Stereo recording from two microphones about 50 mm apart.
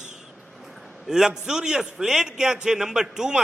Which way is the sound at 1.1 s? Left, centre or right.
Centre.